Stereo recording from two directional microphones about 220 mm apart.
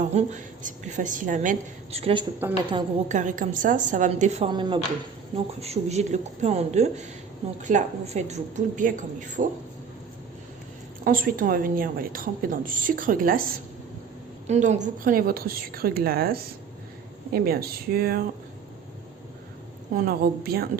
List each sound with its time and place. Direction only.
0.1 s a woman's voice: 30° right (ahead or behind)
2.4 s a woman's voice: 10° right (ahead or behind)
3.1 s a woman's voice: 35° right (ahead or behind)
11.0 s a woman's voice: 40° right (ahead or behind)
19.9 s a woman's voice: 40° right (ahead or behind)